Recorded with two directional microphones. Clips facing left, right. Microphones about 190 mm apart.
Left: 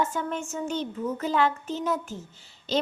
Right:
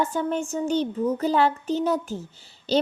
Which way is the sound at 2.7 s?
35° right (ahead or behind).